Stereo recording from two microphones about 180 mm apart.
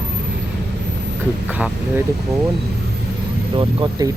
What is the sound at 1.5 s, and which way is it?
Speech, 10° right (ahead or behind).